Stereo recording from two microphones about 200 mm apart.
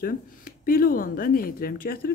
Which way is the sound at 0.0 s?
45° left (ahead or behind).